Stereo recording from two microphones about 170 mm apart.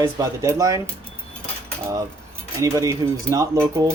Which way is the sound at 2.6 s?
20° right (ahead or behind).